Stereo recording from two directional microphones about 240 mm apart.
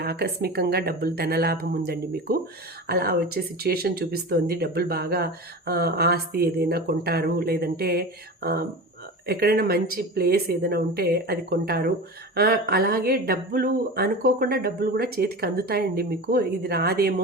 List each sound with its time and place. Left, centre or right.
0.0 s speech: right